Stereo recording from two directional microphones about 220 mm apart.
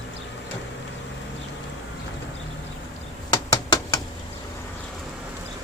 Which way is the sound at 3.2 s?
15° left (ahead or behind).